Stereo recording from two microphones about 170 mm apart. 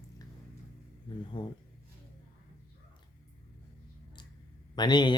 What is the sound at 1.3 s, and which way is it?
Speech, 30° left (ahead or behind).